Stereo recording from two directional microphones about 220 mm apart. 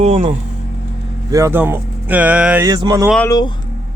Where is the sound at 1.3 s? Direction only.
10° right (ahead or behind).